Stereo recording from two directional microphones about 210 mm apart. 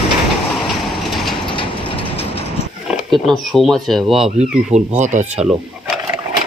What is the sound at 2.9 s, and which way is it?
Speech, centre (ahead or behind).